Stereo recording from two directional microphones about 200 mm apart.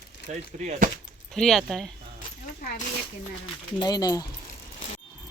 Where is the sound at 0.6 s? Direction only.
40° right (ahead or behind).